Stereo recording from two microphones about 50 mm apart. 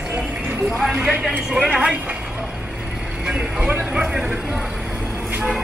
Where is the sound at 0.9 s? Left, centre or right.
Right.